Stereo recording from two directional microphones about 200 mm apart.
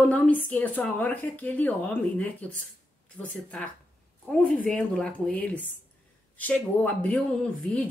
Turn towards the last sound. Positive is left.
turn(degrees=5)  # may be behind; listen again after turning